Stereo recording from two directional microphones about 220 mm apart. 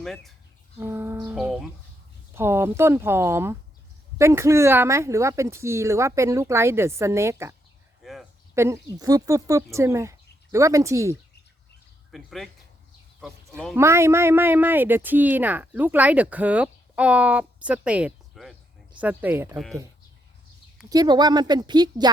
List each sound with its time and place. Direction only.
0.0 s speech: centre (ahead or behind)
0.8 s speech: 10° right (ahead or behind)
8.0 s a sound: centre (ahead or behind)
8.5 s a woman's voice: 10° right (ahead or behind)
12.1 s speech: centre (ahead or behind)
20.9 s speech: 20° right (ahead or behind)